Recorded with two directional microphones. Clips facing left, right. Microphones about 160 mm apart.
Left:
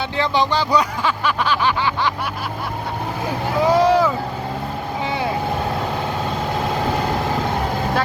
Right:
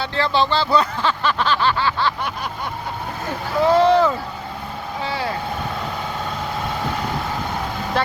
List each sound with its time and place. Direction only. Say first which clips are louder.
0.2 s speech: even; 15° left (ahead or behind)
3.6 s boat: right 1 dB; 10° left (ahead or behind)
5.0 s vehicle: left 2 dB; 20° left (ahead or behind)